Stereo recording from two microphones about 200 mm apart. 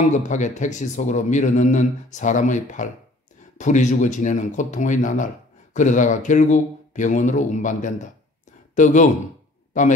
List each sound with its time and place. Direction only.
0.1 s speech: 35° left (ahead or behind)